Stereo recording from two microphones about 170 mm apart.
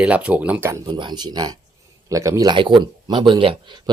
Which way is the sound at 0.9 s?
25° right (ahead or behind).